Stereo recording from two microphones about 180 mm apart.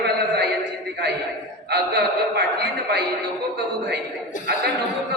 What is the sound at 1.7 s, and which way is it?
Speech, 65° right (ahead or behind).